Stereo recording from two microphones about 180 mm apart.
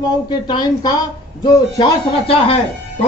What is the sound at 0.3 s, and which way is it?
A woman's voice, 25° left (ahead or behind).